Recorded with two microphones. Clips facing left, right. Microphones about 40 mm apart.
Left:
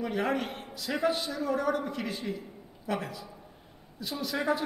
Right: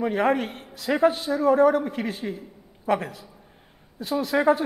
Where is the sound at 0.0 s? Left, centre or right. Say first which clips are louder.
Right 7 dB; right.